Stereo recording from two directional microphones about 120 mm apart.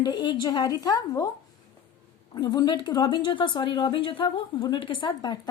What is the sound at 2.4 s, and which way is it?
Speech, 35° left (ahead or behind).